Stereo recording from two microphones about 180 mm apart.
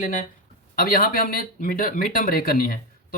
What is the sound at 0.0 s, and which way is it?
Speech, 45° left (ahead or behind).